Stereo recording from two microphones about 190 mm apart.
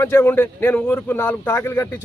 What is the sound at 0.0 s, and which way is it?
Speech, 15° left (ahead or behind).